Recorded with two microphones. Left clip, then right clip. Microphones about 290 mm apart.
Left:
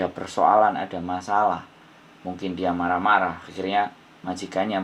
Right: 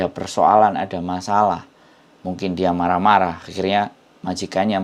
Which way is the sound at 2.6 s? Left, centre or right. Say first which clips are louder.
Right 6 dB; right.